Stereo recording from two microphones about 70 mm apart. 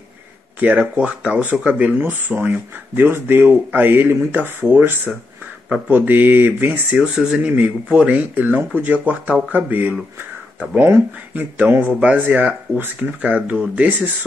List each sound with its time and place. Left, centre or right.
0.6 s speech: centre
7.0 s speech: centre
7.3 s speech: right
13.2 s speech: centre